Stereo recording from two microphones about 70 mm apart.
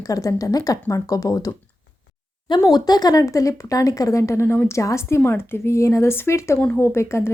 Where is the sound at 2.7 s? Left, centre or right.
Left.